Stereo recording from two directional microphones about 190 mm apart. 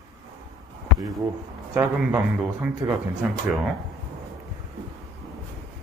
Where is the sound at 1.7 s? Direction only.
10° right (ahead or behind).